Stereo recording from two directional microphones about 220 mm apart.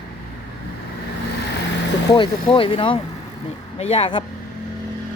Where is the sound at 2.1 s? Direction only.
20° left (ahead or behind).